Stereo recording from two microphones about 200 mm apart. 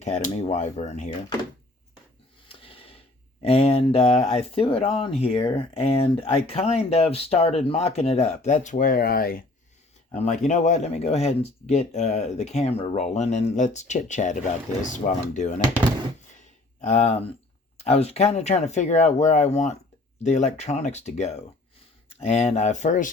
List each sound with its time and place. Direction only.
0.0 s speech: 35° left (ahead or behind)
2.5 s a sound: 25° left (ahead or behind)
3.4 s speech: 30° left (ahead or behind); by 9.4 s 50° left (ahead or behind)
10.1 s speech: 35° left (ahead or behind)
16.8 s speech: 35° left (ahead or behind)